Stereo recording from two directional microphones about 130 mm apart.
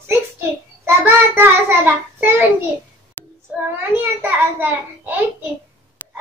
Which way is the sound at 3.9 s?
15° right (ahead or behind).